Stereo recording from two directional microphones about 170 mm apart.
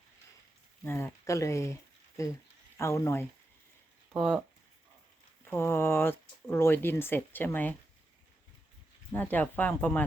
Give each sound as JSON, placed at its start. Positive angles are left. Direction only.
{"t": 0.9, "sound": "speech", "side_deg": 15}
{"t": 4.1, "sound": "speech", "side_deg": 0}
{"t": 5.5, "sound": "speech", "side_deg": 15}
{"t": 9.1, "sound": "speech", "side_deg": 10}